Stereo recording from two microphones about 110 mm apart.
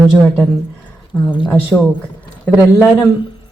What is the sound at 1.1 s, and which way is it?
Speech, 15° left (ahead or behind).